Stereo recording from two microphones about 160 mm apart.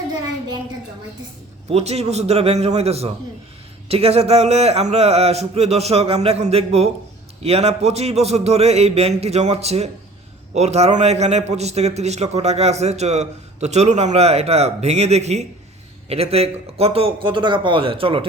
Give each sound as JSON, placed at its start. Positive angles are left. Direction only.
{"t": 1.7, "sound": "a man's voice", "side_deg": -40}